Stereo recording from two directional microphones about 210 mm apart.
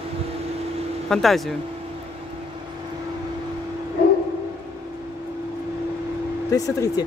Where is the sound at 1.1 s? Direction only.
Centre (ahead or behind).